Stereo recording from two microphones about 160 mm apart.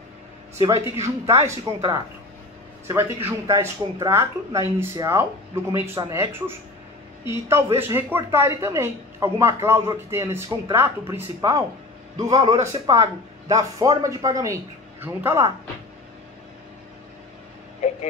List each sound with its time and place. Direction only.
0.9 s speech: 15° right (ahead or behind)
2.9 s speech: 15° right (ahead or behind)
17.8 s a sound: 40° left (ahead or behind)